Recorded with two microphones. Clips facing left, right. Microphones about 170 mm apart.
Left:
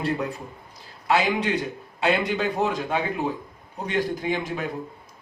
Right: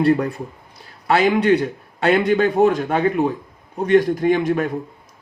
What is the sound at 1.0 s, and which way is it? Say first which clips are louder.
A man's voice: right 7 dB; 60° right (ahead or behind).